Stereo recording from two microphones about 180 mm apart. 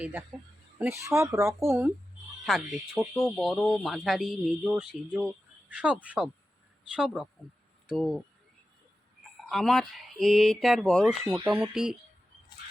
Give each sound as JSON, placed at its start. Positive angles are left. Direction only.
{"t": 0.0, "sound": "speech", "side_deg": -10}
{"t": 2.4, "sound": "speech", "side_deg": 0}
{"t": 9.5, "sound": "speech", "side_deg": 0}